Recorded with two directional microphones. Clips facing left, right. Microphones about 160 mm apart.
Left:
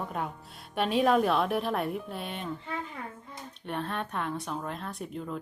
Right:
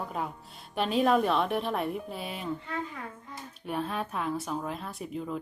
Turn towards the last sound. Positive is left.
turn(degrees=-5)  # may be behind; listen again after turning